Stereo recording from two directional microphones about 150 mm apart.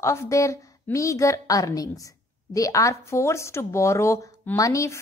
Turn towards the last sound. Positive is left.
turn(degrees=20)  # may be behind; listen again after turning